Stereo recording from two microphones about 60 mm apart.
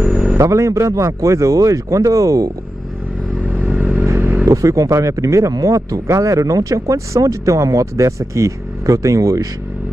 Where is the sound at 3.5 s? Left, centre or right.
Right.